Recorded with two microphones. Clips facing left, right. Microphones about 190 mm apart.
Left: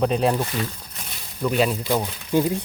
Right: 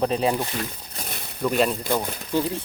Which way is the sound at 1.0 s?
50° right (ahead or behind).